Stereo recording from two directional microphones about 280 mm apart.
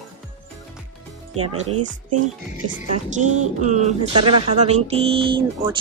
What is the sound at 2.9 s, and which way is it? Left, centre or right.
A woman's voice, right.